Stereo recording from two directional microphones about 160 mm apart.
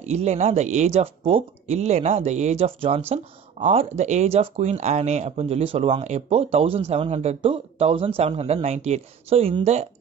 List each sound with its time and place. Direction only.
0.0 s speech: 45° right (ahead or behind)